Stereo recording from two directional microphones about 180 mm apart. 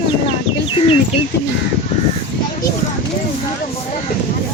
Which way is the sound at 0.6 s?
30° left (ahead or behind).